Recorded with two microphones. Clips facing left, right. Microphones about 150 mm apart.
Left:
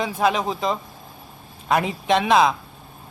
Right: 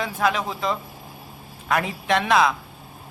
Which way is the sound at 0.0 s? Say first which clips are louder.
Left 2 dB; 20° left (ahead or behind).